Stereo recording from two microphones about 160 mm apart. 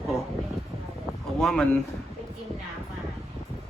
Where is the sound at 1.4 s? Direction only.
5° left (ahead or behind).